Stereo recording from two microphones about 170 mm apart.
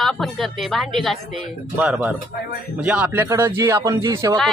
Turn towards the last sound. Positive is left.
turn(degrees=-15)  # may be behind; listen again after turning